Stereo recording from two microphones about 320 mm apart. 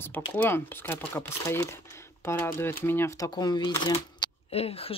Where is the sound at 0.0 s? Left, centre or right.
Centre.